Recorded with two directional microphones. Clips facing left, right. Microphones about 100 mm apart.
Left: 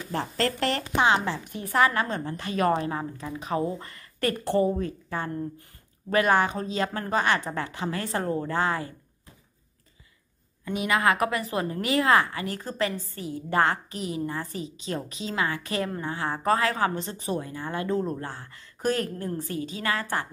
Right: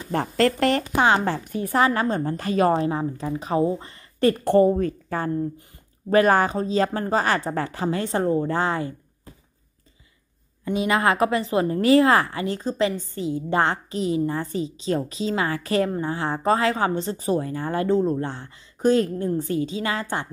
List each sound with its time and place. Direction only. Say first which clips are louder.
0.1 s a woman's voice: right 7 dB; 50° right (ahead or behind)
1.7 s a woman's voice: right 3 dB; 30° right (ahead or behind)
4.5 s a woman's voice: right 6 dB; 50° right (ahead or behind)
7.9 s a woman's voice: right 6 dB; 25° right (ahead or behind)
10.6 s a woman's voice: right 3 dB; 30° right (ahead or behind)
17.9 s a woman's voice: right 7 dB; 25° right (ahead or behind)